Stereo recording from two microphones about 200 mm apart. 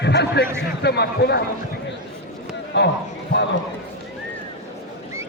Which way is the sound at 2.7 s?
60° left (ahead or behind).